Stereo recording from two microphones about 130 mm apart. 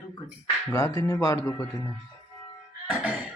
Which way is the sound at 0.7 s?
25° left (ahead or behind).